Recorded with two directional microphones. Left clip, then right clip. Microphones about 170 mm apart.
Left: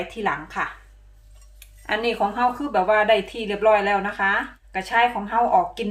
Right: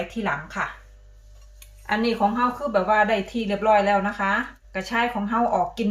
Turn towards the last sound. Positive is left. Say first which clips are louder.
# left 3 dB
turn(degrees=55)  # may be behind; listen again after turning